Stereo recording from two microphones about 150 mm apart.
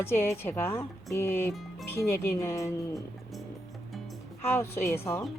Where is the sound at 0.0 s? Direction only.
15° left (ahead or behind).